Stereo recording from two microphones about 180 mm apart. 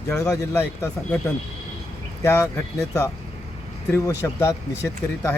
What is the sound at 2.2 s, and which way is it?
Speech, 15° left (ahead or behind).